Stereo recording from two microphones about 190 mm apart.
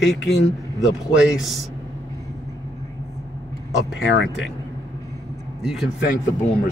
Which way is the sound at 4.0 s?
80° left.